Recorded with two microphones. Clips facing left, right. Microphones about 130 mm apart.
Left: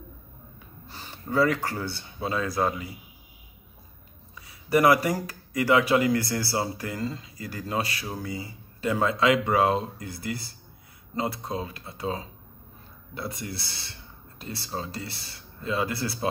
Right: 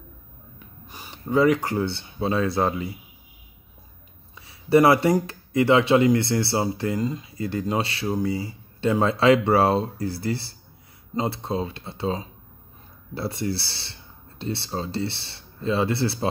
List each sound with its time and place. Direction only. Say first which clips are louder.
0.8 s speech: right 4 dB; 15° right (ahead or behind)
4.4 s speech: right 5 dB; 25° right (ahead or behind)